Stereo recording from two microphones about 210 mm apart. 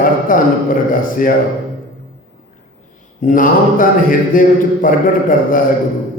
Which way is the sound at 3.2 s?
40° left (ahead or behind).